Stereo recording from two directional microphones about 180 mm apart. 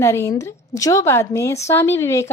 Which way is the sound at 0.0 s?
15° left (ahead or behind).